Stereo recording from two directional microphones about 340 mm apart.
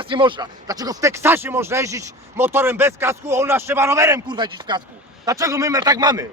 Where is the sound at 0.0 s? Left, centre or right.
Centre.